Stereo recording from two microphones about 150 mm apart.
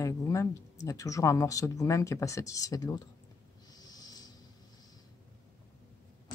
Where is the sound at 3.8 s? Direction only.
25° left (ahead or behind).